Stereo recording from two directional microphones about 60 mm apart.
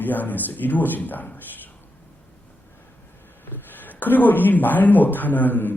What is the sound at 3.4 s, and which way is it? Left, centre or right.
Speech, left.